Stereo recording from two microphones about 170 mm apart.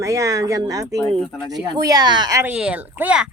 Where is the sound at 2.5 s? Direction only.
5° right (ahead or behind).